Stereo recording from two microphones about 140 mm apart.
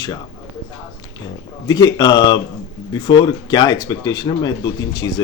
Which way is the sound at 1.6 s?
30° left (ahead or behind).